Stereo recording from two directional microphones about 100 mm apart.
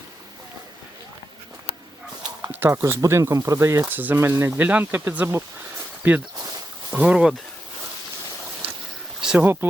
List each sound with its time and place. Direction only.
2.5 s speech: 20° right (ahead or behind)
3.8 s speech: 20° right (ahead or behind)
9.4 s speech: 20° right (ahead or behind)